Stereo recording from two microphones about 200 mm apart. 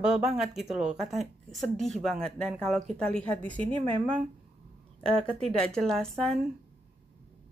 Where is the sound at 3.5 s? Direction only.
25° right (ahead or behind).